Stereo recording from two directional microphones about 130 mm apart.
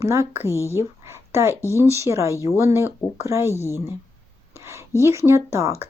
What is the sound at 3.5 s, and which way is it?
Speech, 20° left (ahead or behind).